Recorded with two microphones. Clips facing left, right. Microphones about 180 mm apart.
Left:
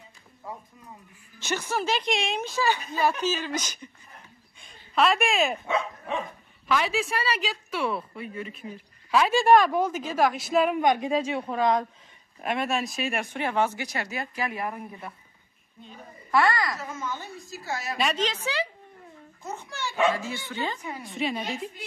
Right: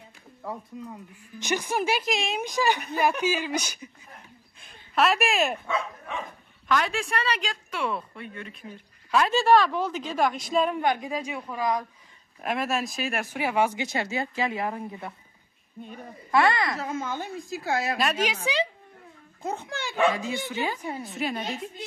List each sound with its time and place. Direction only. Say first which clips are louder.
0.7 s speech: right 13 dB; 75° right (ahead or behind)
1.4 s a woman's voice: right 2 dB; 15° right (ahead or behind)
2.4 s a woman's voice: right 1 dB; 15° right (ahead or behind); by 5.6 s centre (ahead or behind)
6.7 s speech: even; 5° left (ahead or behind)
9.3 s a woman's voice: left 2 dB; 15° left (ahead or behind)
12.4 s speech: even; centre (ahead or behind)
13.8 s speech: right 4 dB; 25° right (ahead or behind)
16.3 s speech: right 1 dB; 20° right (ahead or behind)
16.7 s a woman's voice: right 4 dB; 60° right (ahead or behind)
17.9 s a woman's voice: right 1 dB; 5° right (ahead or behind)
19.4 s a woman's voice: right 5 dB; 55° right (ahead or behind)
20.2 s a woman's voice: right 3 dB; 20° right (ahead or behind)
21.0 s speech: left 4 dB; centre (ahead or behind)